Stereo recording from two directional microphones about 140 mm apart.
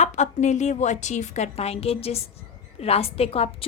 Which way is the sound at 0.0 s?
55° left (ahead or behind).